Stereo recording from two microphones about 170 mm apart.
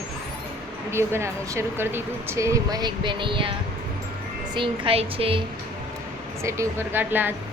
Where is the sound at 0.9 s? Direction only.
15° right (ahead or behind).